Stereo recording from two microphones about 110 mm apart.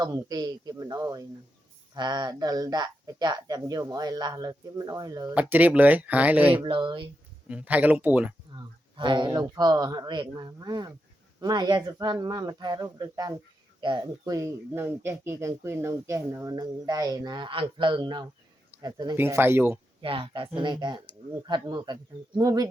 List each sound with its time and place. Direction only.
0.0 s speech: 35° right (ahead or behind)
5.3 s speech: 15° right (ahead or behind)
6.7 s speech: 50° right (ahead or behind)
7.4 s speech: 10° right (ahead or behind)
8.5 s speech: 45° right (ahead or behind)
19.1 s speech: 20° right (ahead or behind)
20.0 s speech: 55° right (ahead or behind); by 22.7 s 35° right (ahead or behind)